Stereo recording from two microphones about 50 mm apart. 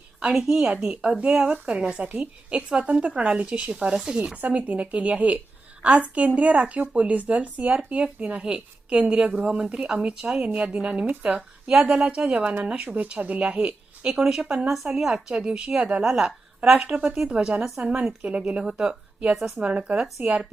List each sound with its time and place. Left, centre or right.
0.3 s a woman's voice: centre
0.8 s a woman's voice: centre
4.4 s a woman's voice: right; by 10.4 s centre
10.4 s a woman's voice: right
11.7 s a woman's voice: centre; by 13.5 s right
13.5 s speech: right
14.4 s a woman's voice: right
14.8 s a woman's voice: centre
15.3 s a woman's voice: centre
16.9 s a woman's voice: right
17.2 s a woman's voice: centre
19.6 s a woman's voice: right